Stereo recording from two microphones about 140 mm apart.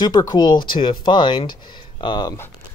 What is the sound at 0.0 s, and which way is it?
Speech, 30° left (ahead or behind).